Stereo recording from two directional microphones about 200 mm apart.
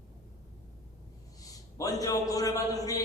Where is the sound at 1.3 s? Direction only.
15° left (ahead or behind).